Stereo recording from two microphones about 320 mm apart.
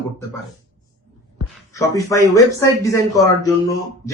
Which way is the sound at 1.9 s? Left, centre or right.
Centre.